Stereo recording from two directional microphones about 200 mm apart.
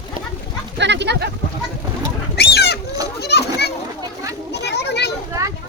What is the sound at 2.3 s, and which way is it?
Bird, 55° left (ahead or behind).